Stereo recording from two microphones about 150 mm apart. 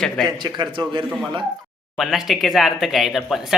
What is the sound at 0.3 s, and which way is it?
Speech, 30° right (ahead or behind).